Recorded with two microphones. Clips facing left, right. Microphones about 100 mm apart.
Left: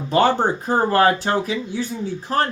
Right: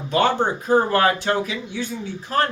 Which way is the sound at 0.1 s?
35° left (ahead or behind).